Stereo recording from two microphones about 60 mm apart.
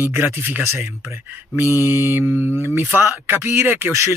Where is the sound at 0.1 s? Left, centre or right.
Right.